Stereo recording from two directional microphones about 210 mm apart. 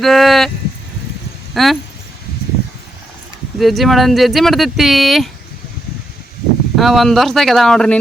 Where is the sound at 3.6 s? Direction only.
Centre (ahead or behind).